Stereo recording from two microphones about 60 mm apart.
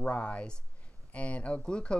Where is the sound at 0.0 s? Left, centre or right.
Centre.